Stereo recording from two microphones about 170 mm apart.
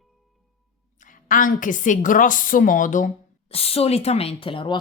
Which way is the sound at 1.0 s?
50° left (ahead or behind).